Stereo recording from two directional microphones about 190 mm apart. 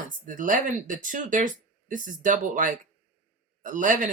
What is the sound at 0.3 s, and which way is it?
Speech, 45° right (ahead or behind).